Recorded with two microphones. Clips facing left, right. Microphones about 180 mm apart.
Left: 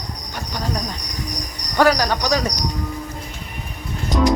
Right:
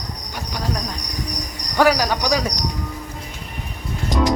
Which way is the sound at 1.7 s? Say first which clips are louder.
Even; 10° right (ahead or behind).